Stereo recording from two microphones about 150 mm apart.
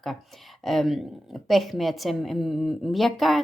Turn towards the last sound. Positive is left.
turn(degrees=0)  # may be behind; listen again after turning